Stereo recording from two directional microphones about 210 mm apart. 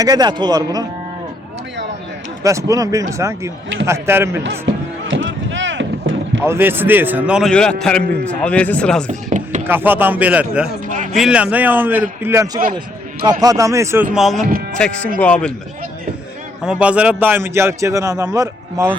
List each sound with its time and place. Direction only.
0.0 s speech: 20° right (ahead or behind)
2.4 s a man's voice: 15° right (ahead or behind)
4.4 s a sound: 60° right (ahead or behind)
6.4 s a man's voice: 10° right (ahead or behind)
9.0 s chopping: 35° right (ahead or behind)
9.6 s a man's voice: 10° right (ahead or behind)
10.8 s a sound: 40° right (ahead or behind)
11.2 s a man's voice: 5° right (ahead or behind)
16.6 s a man's voice: 5° right (ahead or behind)